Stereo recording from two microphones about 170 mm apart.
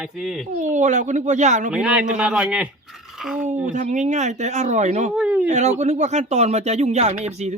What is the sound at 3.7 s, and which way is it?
Speech, 45° right (ahead or behind).